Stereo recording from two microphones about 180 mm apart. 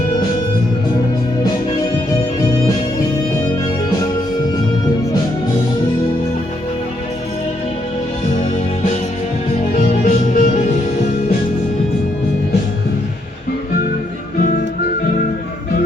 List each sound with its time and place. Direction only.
10.0 s music: 50° left (ahead or behind)